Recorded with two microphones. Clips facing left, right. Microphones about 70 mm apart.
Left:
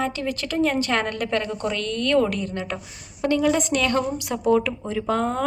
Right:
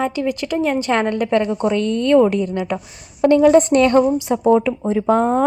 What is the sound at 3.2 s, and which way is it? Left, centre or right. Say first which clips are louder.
Speech: right 9 dB; right.